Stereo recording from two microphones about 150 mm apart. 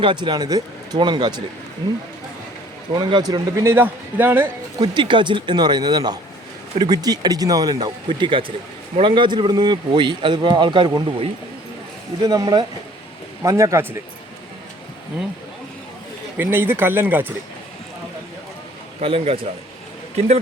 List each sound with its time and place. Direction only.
0.0 s speech: 30° right (ahead or behind)
2.9 s speech: 30° right (ahead or behind); by 4.4 s 15° right (ahead or behind)
4.8 s speech: 30° right (ahead or behind)
12.2 s speech: 25° right (ahead or behind)
16.4 s speech: 15° right (ahead or behind)
19.0 s speech: 40° right (ahead or behind)